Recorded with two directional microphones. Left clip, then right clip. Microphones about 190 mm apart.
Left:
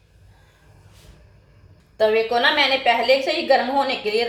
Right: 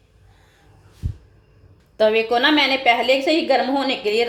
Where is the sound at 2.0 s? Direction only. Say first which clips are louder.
Right 1 dB; 50° right (ahead or behind).